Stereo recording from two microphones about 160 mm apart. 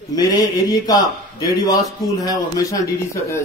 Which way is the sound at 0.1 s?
25° left (ahead or behind).